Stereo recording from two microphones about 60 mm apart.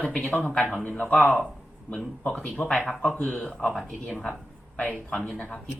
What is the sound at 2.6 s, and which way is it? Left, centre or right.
A man's voice, centre.